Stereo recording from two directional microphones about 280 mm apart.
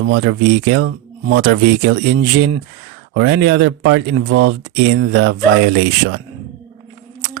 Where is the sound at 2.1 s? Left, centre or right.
Right.